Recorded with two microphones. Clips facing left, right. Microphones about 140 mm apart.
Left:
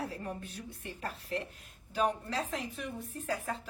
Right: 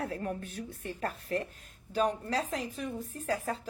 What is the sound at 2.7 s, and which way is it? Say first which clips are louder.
Speech: right 3 dB; 40° right (ahead or behind).